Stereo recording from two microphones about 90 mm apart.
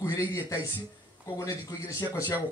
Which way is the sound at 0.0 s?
35° left (ahead or behind).